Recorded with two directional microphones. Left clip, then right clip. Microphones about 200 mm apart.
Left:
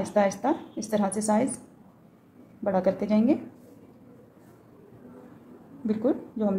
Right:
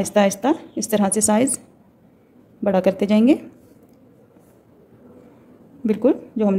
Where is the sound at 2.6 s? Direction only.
55° right (ahead or behind).